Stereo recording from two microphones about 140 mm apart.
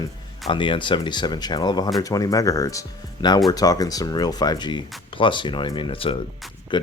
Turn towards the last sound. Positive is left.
turn(degrees=35)  # may be behind; listen again after turning